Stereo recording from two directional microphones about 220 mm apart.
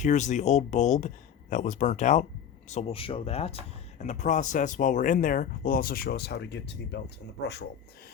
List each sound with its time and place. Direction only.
0.0 s speech: 35° left (ahead or behind); by 7.7 s 50° left (ahead or behind)